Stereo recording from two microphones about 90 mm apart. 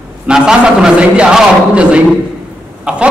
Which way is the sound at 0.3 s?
10° right (ahead or behind).